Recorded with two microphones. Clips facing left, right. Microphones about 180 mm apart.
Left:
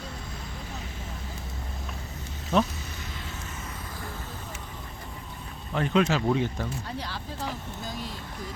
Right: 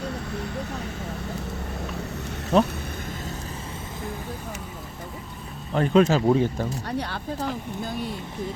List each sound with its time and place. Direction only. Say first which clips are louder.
2.5 s speech: right 4 dB; 35° right (ahead or behind)
5.7 s speech: right 5 dB; 40° right (ahead or behind)
6.8 s speech: right 6 dB; 65° right (ahead or behind)